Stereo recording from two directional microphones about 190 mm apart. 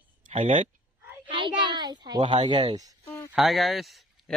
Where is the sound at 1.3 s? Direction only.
25° right (ahead or behind).